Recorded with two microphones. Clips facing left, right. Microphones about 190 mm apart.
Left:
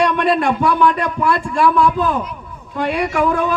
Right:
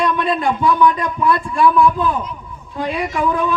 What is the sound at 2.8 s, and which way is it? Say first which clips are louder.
Speech: left 3 dB; 75° left (ahead or behind).